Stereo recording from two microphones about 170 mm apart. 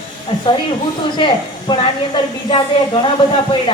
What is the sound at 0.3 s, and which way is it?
A woman's voice, 35° left (ahead or behind).